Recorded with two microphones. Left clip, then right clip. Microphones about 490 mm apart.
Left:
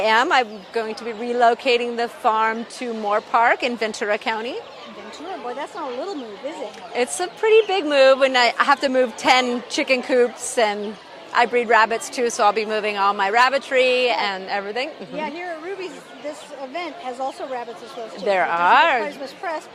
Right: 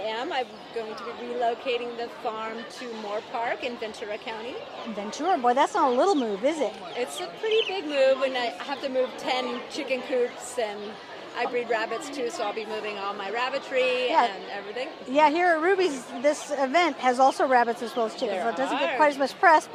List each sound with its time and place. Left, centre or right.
0.0 s speech: left
3.1 s a woman's voice: left
5.5 s speech: right
6.9 s a woman's voice: left
15.2 s a woman's voice: right
18.3 s a woman's voice: left
19.0 s a woman's voice: right